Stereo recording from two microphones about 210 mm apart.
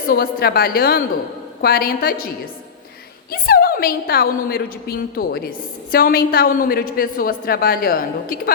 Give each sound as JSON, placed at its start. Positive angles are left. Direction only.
{"t": 0.1, "sound": "a woman's voice", "side_deg": 45}
{"t": 3.4, "sound": "a woman's voice", "side_deg": 45}